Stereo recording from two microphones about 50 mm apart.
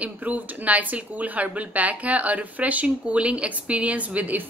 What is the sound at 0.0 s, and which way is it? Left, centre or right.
A woman's voice, right.